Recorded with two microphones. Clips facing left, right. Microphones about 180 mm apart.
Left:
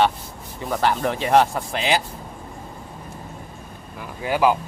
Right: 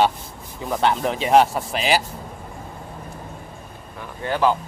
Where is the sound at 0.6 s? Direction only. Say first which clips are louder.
Right 1 dB; centre (ahead or behind).